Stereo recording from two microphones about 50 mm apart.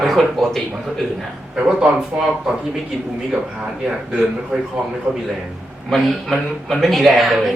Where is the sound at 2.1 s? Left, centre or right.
Centre.